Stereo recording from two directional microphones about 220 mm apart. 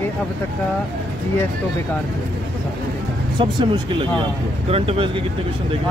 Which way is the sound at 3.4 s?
20° right (ahead or behind).